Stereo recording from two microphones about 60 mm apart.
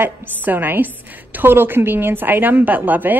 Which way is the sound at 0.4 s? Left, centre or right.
Right.